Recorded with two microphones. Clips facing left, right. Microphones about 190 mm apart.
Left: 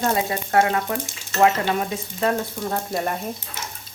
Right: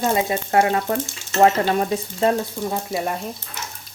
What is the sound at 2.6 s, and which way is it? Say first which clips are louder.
Speech: left 1 dB; 5° right (ahead or behind).